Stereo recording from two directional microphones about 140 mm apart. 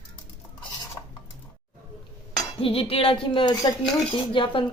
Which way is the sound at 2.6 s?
40° left (ahead or behind).